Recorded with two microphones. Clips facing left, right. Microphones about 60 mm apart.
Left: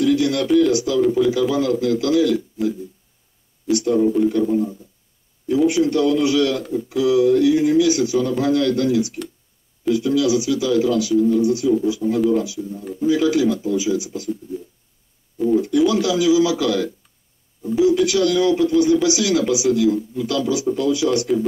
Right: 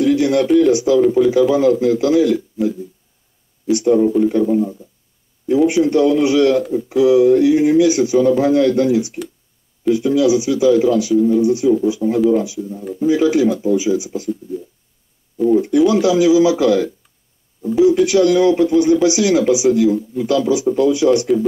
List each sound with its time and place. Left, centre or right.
0.0 s radio: right
0.6 s speech: right
1.0 s speech: centre
1.5 s speech: right
3.7 s speech: right
4.0 s speech: centre
4.3 s speech: centre
5.7 s speech: right
12.6 s speech: centre
13.0 s speech: right
15.3 s speech: centre
15.6 s speech: right
17.8 s speech: right